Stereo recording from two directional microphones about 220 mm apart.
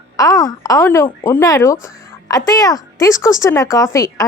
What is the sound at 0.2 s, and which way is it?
Speech, 15° left (ahead or behind).